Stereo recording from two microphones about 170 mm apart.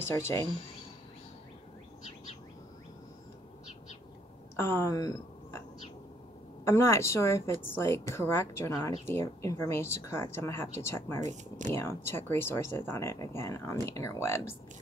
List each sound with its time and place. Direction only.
0.0 s speech: 15° left (ahead or behind)
4.6 s speech: 15° left (ahead or behind)
6.6 s speech: 15° left (ahead or behind)